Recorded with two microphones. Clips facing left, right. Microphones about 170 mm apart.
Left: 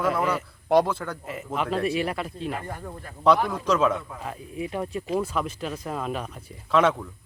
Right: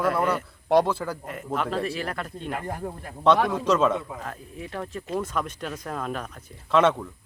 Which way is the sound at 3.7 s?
Centre (ahead or behind).